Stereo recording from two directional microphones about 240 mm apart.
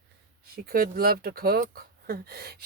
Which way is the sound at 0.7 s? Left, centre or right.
Right.